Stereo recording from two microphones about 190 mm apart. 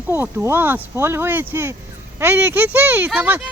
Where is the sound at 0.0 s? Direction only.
10° right (ahead or behind).